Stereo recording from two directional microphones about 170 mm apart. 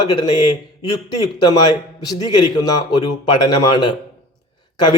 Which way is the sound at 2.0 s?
25° left (ahead or behind).